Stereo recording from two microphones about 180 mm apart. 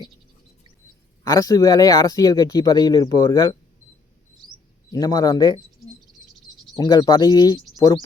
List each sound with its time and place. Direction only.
1.2 s speech: 20° left (ahead or behind)
4.9 s speech: 20° left (ahead or behind)
6.7 s speech: 25° left (ahead or behind)